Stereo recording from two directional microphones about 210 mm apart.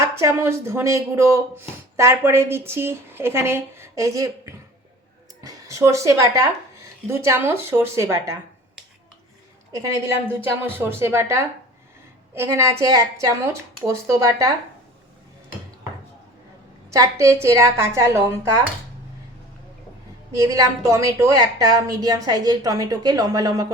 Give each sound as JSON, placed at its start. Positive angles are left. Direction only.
{"t": 0.0, "sound": "a woman's voice", "side_deg": -15}
{"t": 9.7, "sound": "a woman's voice", "side_deg": -15}
{"t": 16.9, "sound": "a woman's voice", "side_deg": -15}
{"t": 20.3, "sound": "a woman's voice", "side_deg": -15}